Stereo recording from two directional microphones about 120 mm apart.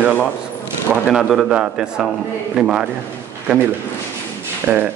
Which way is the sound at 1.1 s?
5° right (ahead or behind).